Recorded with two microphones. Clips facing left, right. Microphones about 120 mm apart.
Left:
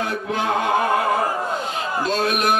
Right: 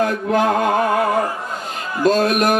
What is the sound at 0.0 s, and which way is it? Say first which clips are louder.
Chant: right 7 dB; 45° right (ahead or behind).